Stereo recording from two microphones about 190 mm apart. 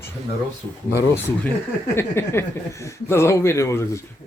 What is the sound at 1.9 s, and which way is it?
Speech, 15° left (ahead or behind).